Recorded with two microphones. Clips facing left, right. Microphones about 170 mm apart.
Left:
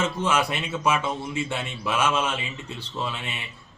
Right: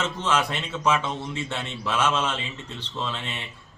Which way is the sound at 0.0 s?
10° left (ahead or behind).